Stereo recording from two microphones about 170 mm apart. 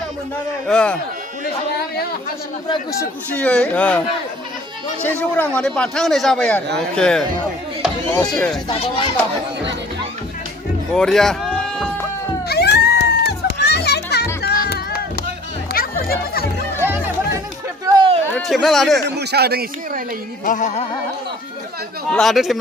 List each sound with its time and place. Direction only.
0.7 s speech: 5° left (ahead or behind)
3.3 s speech: 5° left (ahead or behind)
5.0 s speech: 10° left (ahead or behind)
8.3 s speech: centre (ahead or behind)
10.9 s speech: 5° left (ahead or behind)
12.5 s children playing: 70° left (ahead or behind)
14.4 s music: 70° left (ahead or behind)
16.8 s music: 10° right (ahead or behind)
17.9 s a sound: 30° right (ahead or behind)
18.2 s a sound: 10° left (ahead or behind)
18.4 s speech: centre (ahead or behind)
19.0 s speech: 75° right (ahead or behind)
20.4 s music: 50° left (ahead or behind)
22.1 s speech: centre (ahead or behind)